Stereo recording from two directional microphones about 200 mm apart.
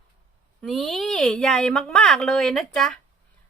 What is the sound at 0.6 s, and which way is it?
A woman's voice, centre (ahead or behind).